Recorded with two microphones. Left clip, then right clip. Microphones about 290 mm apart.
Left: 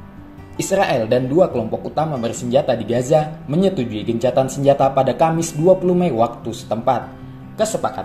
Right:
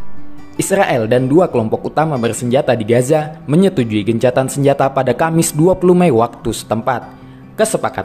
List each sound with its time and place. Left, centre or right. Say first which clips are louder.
0.6 s speech: right 3 dB; right